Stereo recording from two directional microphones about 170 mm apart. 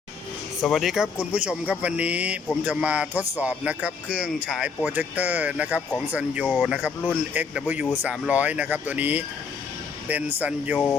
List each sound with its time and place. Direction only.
0.6 s speech: centre (ahead or behind)